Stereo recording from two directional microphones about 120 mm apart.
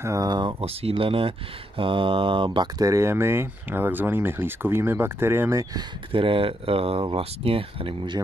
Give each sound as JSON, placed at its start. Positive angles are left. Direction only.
{"t": 0.0, "sound": "speech", "side_deg": -30}
{"t": 0.6, "sound": "speech", "side_deg": -55}
{"t": 2.8, "sound": "speech", "side_deg": -25}
{"t": 6.1, "sound": "speech", "side_deg": -45}